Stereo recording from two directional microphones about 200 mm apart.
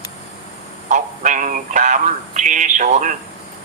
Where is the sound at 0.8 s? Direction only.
40° right (ahead or behind).